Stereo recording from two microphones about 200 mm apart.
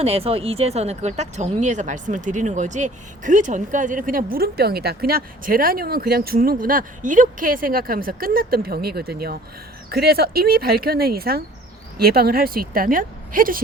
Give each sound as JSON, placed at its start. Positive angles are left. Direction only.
{"t": 0.0, "sound": "speech", "side_deg": -30}